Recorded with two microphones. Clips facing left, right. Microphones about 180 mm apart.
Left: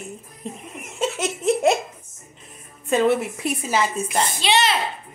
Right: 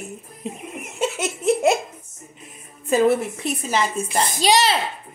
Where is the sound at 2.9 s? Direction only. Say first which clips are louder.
Right 1 dB; centre (ahead or behind).